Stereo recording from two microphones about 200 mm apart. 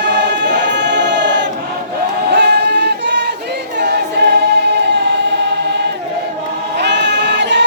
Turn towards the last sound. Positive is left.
turn(degrees=-60)  # may be behind; listen again after turning